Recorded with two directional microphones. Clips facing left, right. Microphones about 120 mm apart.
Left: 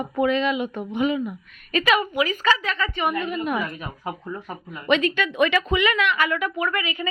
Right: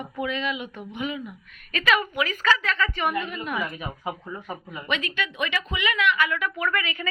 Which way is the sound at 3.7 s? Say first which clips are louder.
Even; 10° right (ahead or behind).